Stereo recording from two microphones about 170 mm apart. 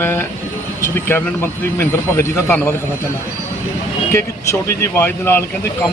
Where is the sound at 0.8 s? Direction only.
15° left (ahead or behind).